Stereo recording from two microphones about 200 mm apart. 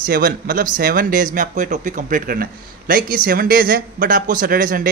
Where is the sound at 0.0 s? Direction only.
45° right (ahead or behind).